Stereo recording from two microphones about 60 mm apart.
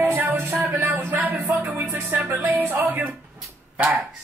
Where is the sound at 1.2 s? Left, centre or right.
Right.